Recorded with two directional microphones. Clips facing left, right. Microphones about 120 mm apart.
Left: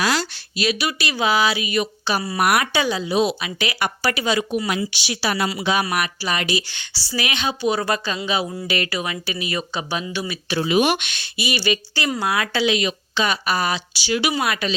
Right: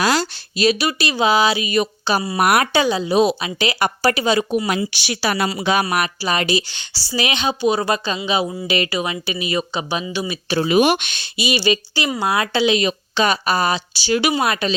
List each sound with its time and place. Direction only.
0.0 s speech: 40° right (ahead or behind)
2.8 s speech: 20° right (ahead or behind)
3.1 s speech: 40° right (ahead or behind)
5.0 s speech: 55° right (ahead or behind)
5.8 s speech: 35° right (ahead or behind); by 10.3 s 20° right (ahead or behind)
10.5 s speech: 45° right (ahead or behind)
11.1 s speech: 25° right (ahead or behind)